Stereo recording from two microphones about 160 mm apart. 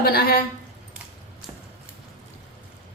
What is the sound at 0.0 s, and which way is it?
Speech, 70° left (ahead or behind).